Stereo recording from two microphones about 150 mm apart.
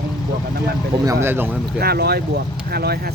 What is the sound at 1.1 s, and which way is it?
Speech, 15° right (ahead or behind).